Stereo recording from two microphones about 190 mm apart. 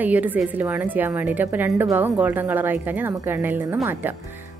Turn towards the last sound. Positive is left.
turn(degrees=-10)  # may be behind; listen again after turning